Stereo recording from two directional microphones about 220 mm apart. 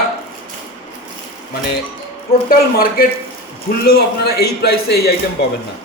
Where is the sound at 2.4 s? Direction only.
40° left (ahead or behind).